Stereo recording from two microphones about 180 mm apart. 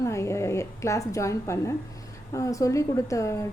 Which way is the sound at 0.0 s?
15° left (ahead or behind).